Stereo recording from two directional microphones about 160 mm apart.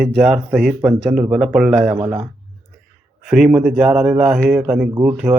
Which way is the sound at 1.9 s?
25° right (ahead or behind).